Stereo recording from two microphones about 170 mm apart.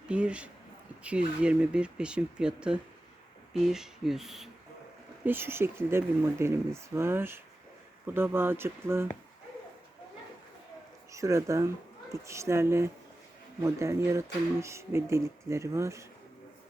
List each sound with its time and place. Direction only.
0.1 s speech: 5° right (ahead or behind)
5.2 s speech: 15° right (ahead or behind)
11.1 s speech: 15° right (ahead or behind)